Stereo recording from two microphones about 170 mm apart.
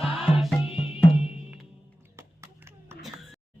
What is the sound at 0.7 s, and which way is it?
Music, 35° left (ahead or behind).